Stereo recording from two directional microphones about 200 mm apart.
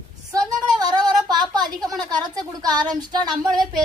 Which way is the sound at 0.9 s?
20° right (ahead or behind).